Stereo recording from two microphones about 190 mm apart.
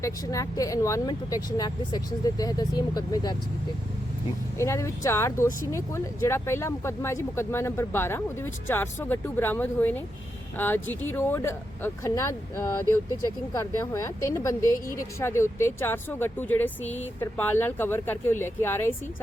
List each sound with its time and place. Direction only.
0.0 s speech: 15° left (ahead or behind)
4.5 s speech: 15° left (ahead or behind)